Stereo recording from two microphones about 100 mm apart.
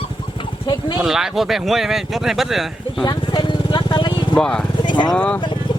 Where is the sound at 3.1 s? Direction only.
55° left (ahead or behind).